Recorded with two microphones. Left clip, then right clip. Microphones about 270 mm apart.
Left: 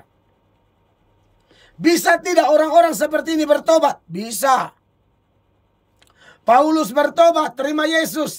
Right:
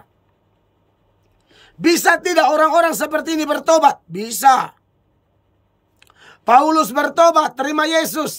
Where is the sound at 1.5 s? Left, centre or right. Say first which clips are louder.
Right 1 dB; centre.